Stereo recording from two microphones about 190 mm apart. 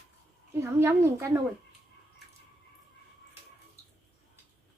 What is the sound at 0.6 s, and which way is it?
Speech, 15° right (ahead or behind).